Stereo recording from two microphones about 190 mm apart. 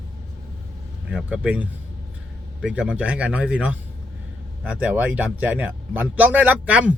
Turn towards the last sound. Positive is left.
turn(degrees=-5)  # may be behind; listen again after turning